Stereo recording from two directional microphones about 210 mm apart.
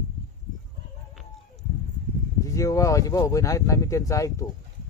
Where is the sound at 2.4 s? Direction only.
15° left (ahead or behind).